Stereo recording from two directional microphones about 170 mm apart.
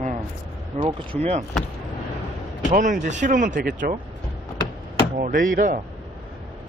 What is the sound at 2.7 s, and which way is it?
Speech, 50° right (ahead or behind).